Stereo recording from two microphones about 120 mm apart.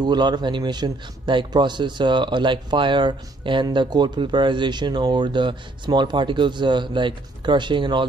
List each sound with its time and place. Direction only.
0.0 s a man's voice: 35° right (ahead or behind)